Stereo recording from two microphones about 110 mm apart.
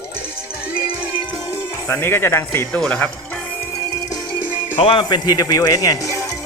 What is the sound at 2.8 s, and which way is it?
Speech, 5° left (ahead or behind).